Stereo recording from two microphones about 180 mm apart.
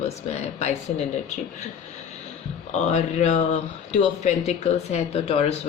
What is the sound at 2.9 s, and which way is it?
Speech, 40° left (ahead or behind).